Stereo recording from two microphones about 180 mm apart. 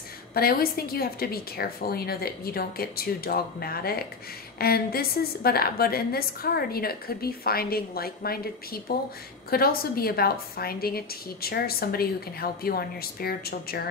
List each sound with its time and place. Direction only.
0.3 s a woman's voice: 55° left (ahead or behind)